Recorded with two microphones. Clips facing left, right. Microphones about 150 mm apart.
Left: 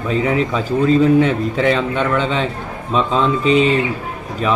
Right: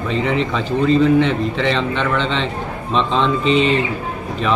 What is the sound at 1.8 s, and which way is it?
A man's voice, 10° left (ahead or behind).